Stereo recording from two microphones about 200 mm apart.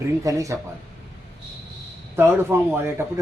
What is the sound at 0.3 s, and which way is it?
Speech, 15° right (ahead or behind).